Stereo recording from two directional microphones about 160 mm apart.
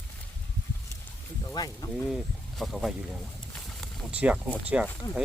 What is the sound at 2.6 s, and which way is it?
Speech, centre (ahead or behind).